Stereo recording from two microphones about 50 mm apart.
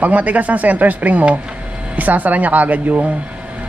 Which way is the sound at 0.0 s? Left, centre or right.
Right.